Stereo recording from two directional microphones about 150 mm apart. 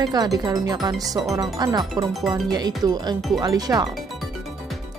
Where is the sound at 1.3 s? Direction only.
25° right (ahead or behind).